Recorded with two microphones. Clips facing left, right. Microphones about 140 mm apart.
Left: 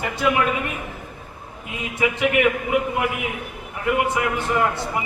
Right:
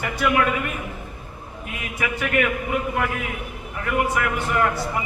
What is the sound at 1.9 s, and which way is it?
A man's voice, 20° left (ahead or behind).